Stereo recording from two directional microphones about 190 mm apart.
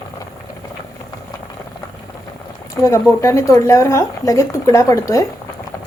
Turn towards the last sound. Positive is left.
turn(degrees=15)  # may be behind; listen again after turning